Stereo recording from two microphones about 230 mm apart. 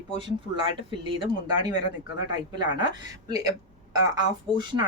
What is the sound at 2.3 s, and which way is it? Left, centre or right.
Speech, centre.